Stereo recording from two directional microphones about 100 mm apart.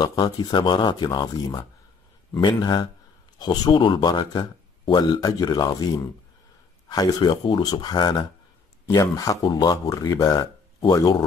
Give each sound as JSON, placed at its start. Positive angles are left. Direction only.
{"t": 0.0, "sound": "speech", "side_deg": 45}